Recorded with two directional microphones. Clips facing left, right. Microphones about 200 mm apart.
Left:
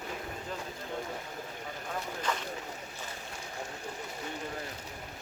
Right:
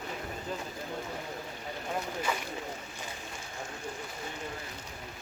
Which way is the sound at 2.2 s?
10° right (ahead or behind).